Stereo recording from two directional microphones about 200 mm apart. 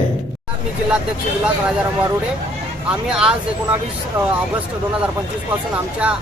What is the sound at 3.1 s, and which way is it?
Speech, 5° right (ahead or behind).